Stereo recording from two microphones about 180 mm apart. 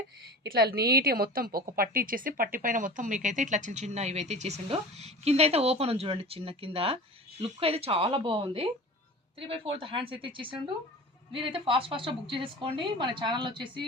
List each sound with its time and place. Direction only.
0.5 s a woman's voice: 60° right (ahead or behind); by 13.8 s 25° right (ahead or behind)